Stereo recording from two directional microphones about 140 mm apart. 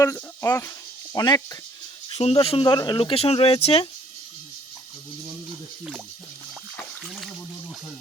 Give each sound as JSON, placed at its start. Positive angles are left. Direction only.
{"t": 0.0, "sound": "speech", "side_deg": 25}
{"t": 2.0, "sound": "speech", "side_deg": 45}
{"t": 6.7, "sound": "speech", "side_deg": 0}